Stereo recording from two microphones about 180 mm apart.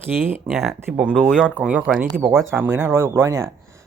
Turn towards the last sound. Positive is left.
turn(degrees=-15)  # may be behind; listen again after turning